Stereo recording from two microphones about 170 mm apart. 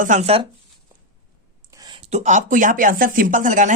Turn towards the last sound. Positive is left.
turn(degrees=-50)  # may be behind; listen again after turning